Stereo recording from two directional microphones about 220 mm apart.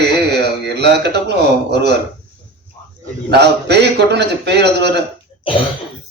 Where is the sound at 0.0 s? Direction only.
50° right (ahead or behind).